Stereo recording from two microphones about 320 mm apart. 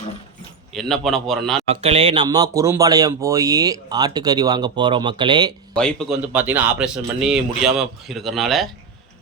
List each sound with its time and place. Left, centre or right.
0.7 s speech: centre
1.6 s speech: centre
5.7 s speech: centre